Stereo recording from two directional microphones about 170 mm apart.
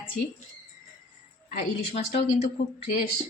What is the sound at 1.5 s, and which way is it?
A woman's voice, 45° left (ahead or behind).